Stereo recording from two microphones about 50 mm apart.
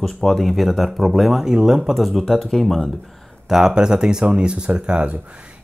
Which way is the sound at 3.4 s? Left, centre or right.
Centre.